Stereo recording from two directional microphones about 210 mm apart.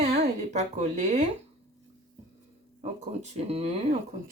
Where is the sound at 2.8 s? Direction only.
30° right (ahead or behind).